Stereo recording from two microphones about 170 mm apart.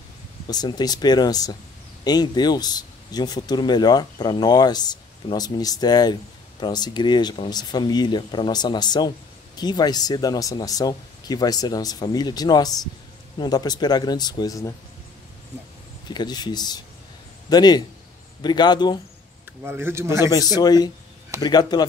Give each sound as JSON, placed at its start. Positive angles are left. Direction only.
{"t": 0.5, "sound": "speech", "side_deg": 25}
{"t": 16.1, "sound": "speech", "side_deg": 25}
{"t": 19.6, "sound": "speech", "side_deg": -15}
{"t": 20.2, "sound": "speech", "side_deg": 25}